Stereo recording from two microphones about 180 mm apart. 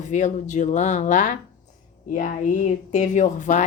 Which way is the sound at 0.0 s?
45° left (ahead or behind).